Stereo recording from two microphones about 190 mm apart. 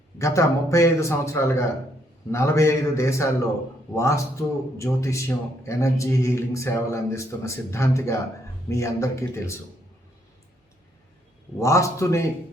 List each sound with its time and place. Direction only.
0.2 s a man's voice: 15° left (ahead or behind)
11.6 s a man's voice: 15° left (ahead or behind)